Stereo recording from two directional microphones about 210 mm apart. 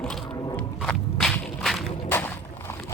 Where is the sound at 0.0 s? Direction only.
5° left (ahead or behind).